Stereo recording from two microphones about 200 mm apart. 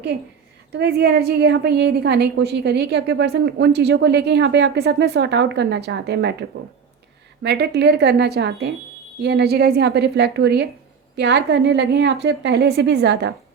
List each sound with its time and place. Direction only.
0.7 s a woman's voice: 55° right (ahead or behind)
7.4 s a woman's voice: 55° right (ahead or behind)